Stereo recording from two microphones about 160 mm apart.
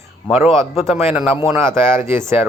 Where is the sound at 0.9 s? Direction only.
10° right (ahead or behind).